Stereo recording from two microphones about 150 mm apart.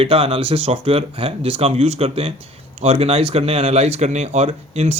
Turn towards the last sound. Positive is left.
turn(degrees=-45)  # may be behind; listen again after turning